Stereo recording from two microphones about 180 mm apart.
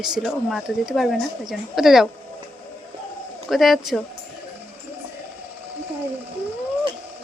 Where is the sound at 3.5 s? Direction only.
Centre (ahead or behind).